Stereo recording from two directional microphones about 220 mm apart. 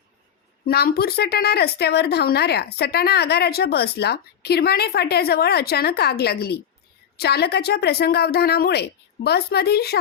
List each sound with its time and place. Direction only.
0.6 s a woman's voice: 45° left (ahead or behind)